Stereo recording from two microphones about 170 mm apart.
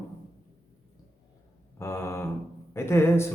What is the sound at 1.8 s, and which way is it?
Mantra, 15° left (ahead or behind).